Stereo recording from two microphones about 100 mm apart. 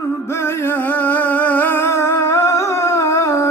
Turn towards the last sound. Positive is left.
turn(degrees=30)  # may be behind; listen again after turning